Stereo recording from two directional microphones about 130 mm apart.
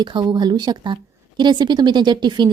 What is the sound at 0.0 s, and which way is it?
A woman's voice, 35° right (ahead or behind).